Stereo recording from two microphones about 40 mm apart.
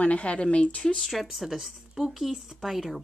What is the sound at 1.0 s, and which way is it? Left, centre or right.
Speech, centre.